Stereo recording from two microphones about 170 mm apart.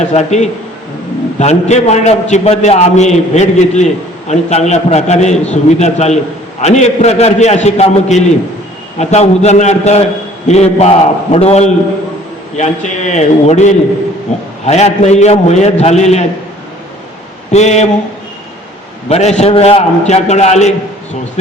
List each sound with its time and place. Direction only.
0.0 s a man's voice: 40° left (ahead or behind)
17.5 s a man's voice: 40° left (ahead or behind)
19.0 s a man's voice: 40° left (ahead or behind)